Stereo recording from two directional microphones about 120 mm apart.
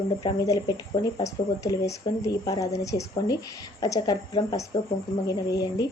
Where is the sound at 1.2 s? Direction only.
25° left (ahead or behind).